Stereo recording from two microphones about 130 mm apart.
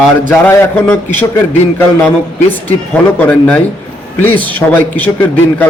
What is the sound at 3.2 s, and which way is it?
A man's voice, 10° left (ahead or behind).